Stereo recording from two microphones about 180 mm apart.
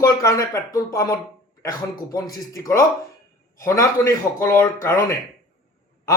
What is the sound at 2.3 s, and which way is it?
Speech, 20° left (ahead or behind).